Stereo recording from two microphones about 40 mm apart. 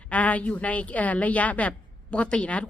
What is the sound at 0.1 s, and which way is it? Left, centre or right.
Speech, left.